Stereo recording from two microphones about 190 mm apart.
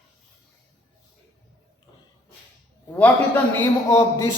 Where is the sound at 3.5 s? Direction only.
15° left (ahead or behind).